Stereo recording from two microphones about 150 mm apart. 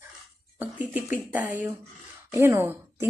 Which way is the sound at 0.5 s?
10° right (ahead or behind).